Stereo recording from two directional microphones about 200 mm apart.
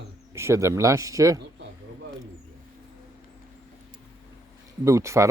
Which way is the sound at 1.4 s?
60° right (ahead or behind).